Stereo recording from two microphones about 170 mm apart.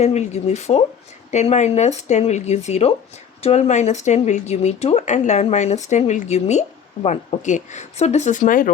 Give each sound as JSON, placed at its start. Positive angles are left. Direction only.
{"t": 0.0, "sound": "speech", "side_deg": 40}